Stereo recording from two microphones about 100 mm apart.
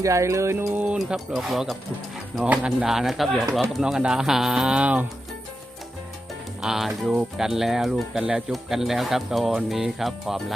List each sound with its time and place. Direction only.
0.0 s music: 30° right (ahead or behind)
0.9 s speech: centre (ahead or behind)
6.6 s speech: 5° right (ahead or behind)